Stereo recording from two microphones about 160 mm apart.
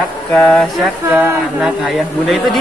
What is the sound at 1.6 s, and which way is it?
Speech, 5° right (ahead or behind).